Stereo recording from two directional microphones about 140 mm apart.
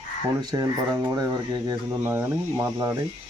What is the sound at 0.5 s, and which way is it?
Speech, 20° right (ahead or behind).